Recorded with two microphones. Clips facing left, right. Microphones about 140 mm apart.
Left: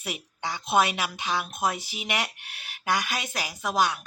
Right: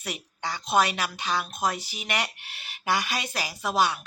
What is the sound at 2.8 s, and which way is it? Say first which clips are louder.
A woman's voice: even; centre (ahead or behind).